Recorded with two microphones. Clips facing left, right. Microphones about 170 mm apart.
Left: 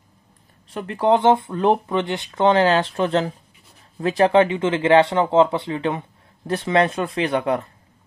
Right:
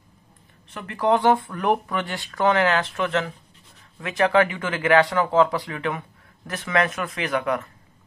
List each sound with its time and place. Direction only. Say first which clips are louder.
0.7 s speech: left 3 dB; 25° left (ahead or behind)